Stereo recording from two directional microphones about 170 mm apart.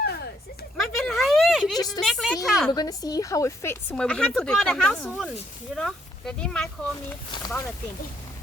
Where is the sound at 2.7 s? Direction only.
20° left (ahead or behind); by 6.7 s 5° left (ahead or behind).